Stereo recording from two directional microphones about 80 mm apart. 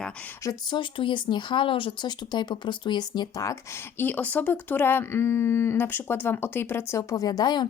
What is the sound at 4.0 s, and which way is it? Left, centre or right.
Speech, left.